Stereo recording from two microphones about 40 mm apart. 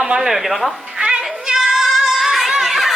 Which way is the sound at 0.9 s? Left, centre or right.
Right.